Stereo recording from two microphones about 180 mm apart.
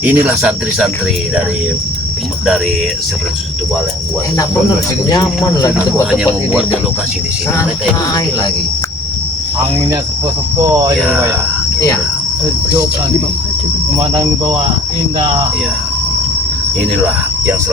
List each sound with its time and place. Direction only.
0.0 s speech: 5° right (ahead or behind)
5.0 s speech: 20° left (ahead or behind)